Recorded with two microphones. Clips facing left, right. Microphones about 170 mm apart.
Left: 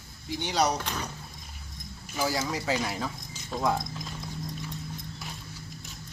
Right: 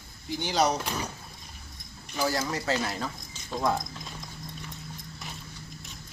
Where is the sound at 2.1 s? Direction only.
10° left (ahead or behind).